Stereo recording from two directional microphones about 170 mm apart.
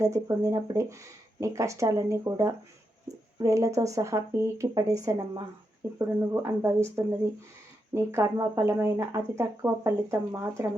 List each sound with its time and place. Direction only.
0.0 s speech: 20° right (ahead or behind)